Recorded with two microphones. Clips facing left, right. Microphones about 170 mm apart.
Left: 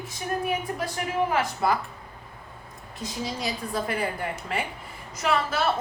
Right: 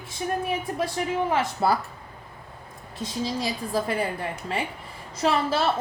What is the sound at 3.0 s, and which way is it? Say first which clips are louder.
A woman's voice: right 3 dB; 30° right (ahead or behind).